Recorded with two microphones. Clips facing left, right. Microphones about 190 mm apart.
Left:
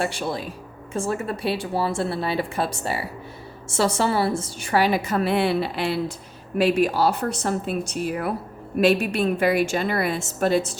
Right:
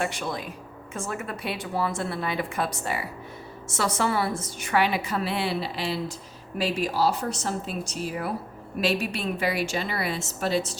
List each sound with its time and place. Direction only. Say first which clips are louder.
0.0 s a woman's voice: left 3 dB; 30° left (ahead or behind); by 10.8 s 50° left (ahead or behind)